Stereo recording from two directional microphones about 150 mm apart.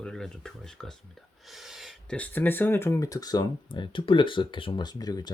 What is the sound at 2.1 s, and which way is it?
Speech, 10° left (ahead or behind).